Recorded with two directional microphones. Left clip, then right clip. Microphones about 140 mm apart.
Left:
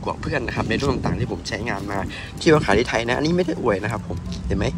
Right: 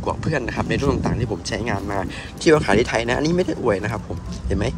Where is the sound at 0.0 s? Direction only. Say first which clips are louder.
Right 1 dB; 15° right (ahead or behind).